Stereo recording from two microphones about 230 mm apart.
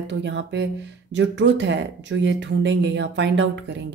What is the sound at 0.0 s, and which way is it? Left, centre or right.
Speech, right.